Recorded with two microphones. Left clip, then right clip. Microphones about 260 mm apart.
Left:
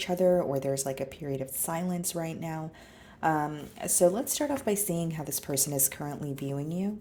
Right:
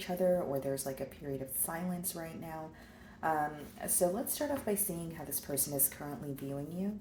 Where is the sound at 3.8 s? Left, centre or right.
Left.